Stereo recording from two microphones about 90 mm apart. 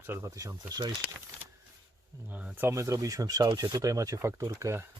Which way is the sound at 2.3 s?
15° right (ahead or behind).